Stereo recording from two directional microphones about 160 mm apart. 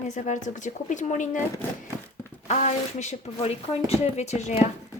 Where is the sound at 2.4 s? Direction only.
45° left (ahead or behind).